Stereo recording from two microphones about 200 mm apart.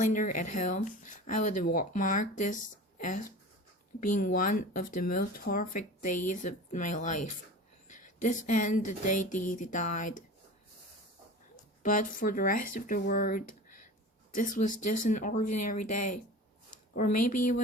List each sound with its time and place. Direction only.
0.0 s speech: 40° left (ahead or behind)
4.1 s speech: 40° left (ahead or behind)
11.8 s speech: 40° left (ahead or behind)